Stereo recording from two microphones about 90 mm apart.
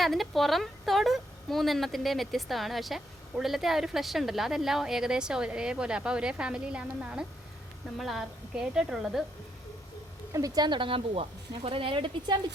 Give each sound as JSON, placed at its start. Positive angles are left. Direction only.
{"t": 0.0, "sound": "a woman's voice", "side_deg": 0}
{"t": 10.3, "sound": "speech", "side_deg": -45}